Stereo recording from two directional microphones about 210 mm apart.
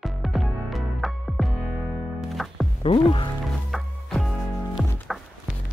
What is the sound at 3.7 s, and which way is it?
Music, centre (ahead or behind).